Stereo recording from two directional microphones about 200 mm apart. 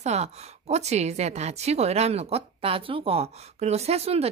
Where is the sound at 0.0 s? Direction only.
35° right (ahead or behind).